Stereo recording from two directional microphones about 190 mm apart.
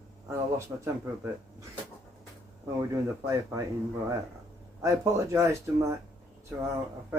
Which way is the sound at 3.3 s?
15° right (ahead or behind).